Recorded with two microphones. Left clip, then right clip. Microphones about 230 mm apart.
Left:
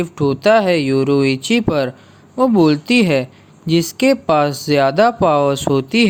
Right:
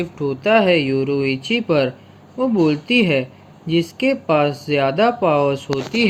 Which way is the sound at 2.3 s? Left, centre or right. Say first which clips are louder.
Left 4 dB; left.